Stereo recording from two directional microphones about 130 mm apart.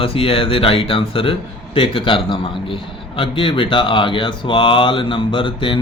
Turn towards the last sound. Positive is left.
turn(degrees=40)  # may be behind; listen again after turning